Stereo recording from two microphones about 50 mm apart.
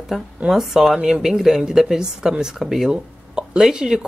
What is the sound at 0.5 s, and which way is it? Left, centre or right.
A woman's voice, centre.